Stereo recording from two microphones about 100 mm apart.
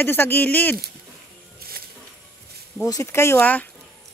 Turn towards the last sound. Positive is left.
turn(degrees=15)  # may be behind; listen again after turning